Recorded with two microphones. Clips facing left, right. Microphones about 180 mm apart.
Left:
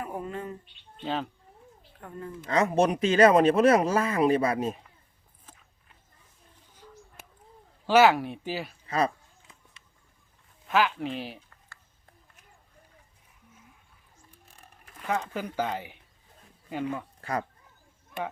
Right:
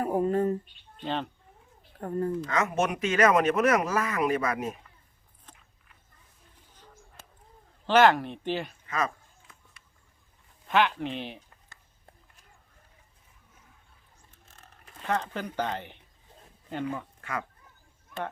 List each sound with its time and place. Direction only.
0.0 s speech: 40° right (ahead or behind)
1.0 s speech: centre (ahead or behind)
2.0 s a woman's voice: 40° right (ahead or behind)
2.5 s speech: 35° left (ahead or behind)
5.5 s dog: 5° left (ahead or behind)
7.9 s speech: 10° left (ahead or behind)
8.9 s a sound: 35° left (ahead or behind)
10.7 s speech: centre (ahead or behind)
14.3 s a sound: 10° left (ahead or behind)
15.0 s speech: 5° left (ahead or behind)
17.2 s speech: 35° left (ahead or behind)